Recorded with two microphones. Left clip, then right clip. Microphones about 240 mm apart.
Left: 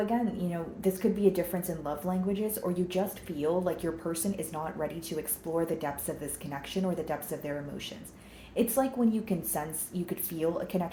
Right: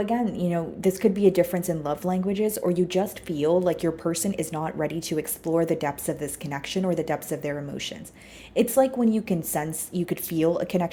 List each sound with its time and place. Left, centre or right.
0.0 s a woman's voice: right